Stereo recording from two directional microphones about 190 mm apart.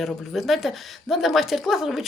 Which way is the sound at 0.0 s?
Centre (ahead or behind).